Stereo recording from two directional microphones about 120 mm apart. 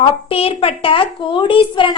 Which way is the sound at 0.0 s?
50° left (ahead or behind).